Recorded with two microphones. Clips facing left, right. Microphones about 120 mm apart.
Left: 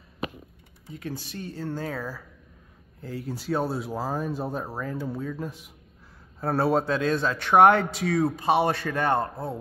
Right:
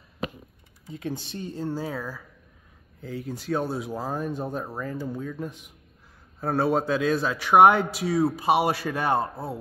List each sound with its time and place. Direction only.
0.9 s speech: 25° right (ahead or behind); by 2.0 s 10° right (ahead or behind)
3.0 s a man's voice: centre (ahead or behind)